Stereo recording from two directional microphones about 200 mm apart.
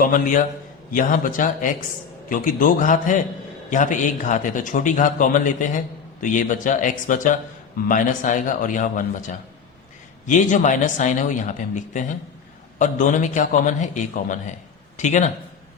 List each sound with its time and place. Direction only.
0.0 s a man's voice: 40° left (ahead or behind)